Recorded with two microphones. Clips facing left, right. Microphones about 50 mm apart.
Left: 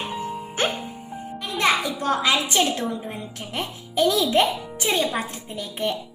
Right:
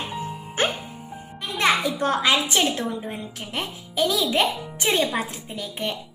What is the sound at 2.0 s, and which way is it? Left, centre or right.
A woman's voice, right.